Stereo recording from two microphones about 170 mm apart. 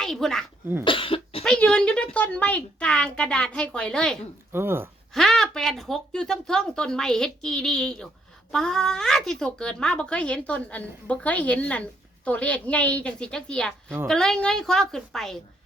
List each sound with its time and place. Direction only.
0.0 s speech: 5° left (ahead or behind)
0.9 s cough: 30° left (ahead or behind)
1.5 s a woman's voice: 5° left (ahead or behind)
4.5 s speech: 15° right (ahead or behind)
5.1 s a woman's voice: centre (ahead or behind)